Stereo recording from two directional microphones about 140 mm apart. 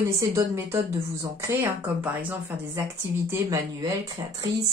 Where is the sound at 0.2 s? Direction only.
20° right (ahead or behind).